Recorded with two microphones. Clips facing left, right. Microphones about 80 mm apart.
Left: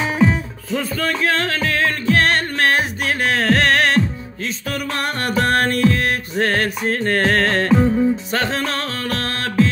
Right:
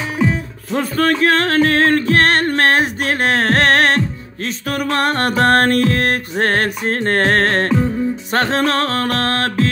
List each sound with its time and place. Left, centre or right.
0.7 s music: right